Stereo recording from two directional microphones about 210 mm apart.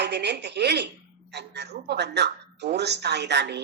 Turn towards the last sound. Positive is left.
turn(degrees=-55)  # may be behind; listen again after turning